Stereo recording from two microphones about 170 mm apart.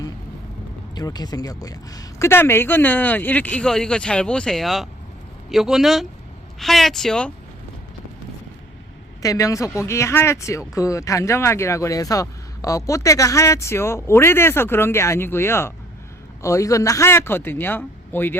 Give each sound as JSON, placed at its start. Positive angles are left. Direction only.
{"t": 0.9, "sound": "speech", "side_deg": 25}
{"t": 9.2, "sound": "speech", "side_deg": 20}